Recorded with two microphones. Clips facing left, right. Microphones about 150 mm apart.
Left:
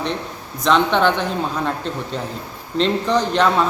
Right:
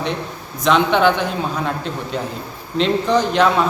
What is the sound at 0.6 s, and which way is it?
Speech, 5° right (ahead or behind).